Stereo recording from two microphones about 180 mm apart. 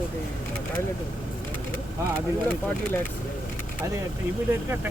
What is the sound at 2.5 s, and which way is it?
Speech, 10° left (ahead or behind).